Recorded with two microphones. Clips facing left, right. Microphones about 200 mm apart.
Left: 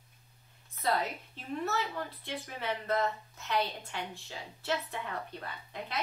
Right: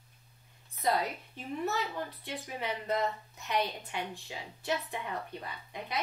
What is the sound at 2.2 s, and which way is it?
A woman's voice, 15° right (ahead or behind).